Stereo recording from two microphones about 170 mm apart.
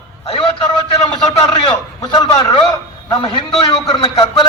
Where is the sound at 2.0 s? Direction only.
25° left (ahead or behind).